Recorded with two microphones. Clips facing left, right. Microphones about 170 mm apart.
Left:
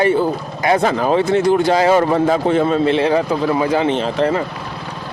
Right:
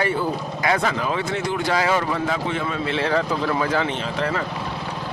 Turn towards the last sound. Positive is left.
turn(degrees=25)  # may be behind; listen again after turning